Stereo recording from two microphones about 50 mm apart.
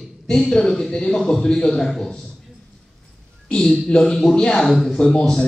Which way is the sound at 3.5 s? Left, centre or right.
Centre.